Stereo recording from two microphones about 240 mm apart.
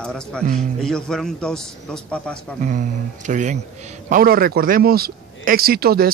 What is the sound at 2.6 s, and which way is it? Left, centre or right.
Speech, right.